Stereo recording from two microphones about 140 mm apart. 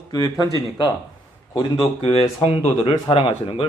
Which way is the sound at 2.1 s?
45° left (ahead or behind).